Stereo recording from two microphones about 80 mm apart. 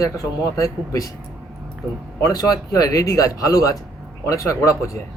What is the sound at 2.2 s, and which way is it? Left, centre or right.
Speech, left.